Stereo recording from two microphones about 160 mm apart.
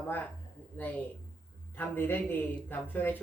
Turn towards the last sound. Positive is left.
turn(degrees=10)  # may be behind; listen again after turning